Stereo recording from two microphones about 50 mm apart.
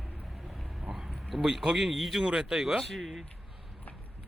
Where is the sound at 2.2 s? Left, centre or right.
Centre.